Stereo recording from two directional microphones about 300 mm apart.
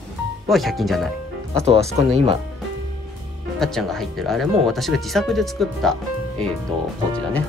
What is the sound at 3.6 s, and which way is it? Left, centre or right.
Speech, centre.